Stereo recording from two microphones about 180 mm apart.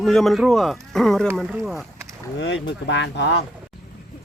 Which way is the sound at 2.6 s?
75° left (ahead or behind).